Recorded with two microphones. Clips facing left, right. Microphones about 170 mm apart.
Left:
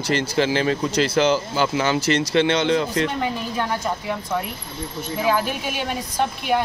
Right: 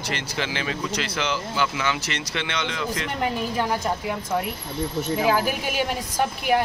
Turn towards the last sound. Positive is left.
turn(degrees=-5)  # may be behind; listen again after turning